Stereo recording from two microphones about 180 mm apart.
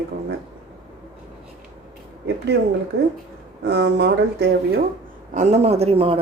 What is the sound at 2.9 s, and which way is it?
Speech, 65° right (ahead or behind).